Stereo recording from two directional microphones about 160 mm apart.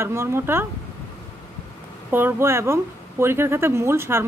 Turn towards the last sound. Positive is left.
turn(degrees=-15)  # may be behind; listen again after turning